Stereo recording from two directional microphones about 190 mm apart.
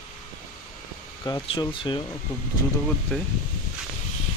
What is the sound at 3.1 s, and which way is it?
Speech, 5° left (ahead or behind).